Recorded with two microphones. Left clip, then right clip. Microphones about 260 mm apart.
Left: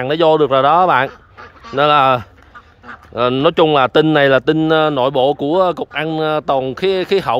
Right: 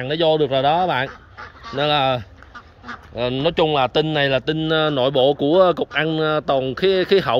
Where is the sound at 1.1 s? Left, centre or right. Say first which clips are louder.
Left 1 dB; left.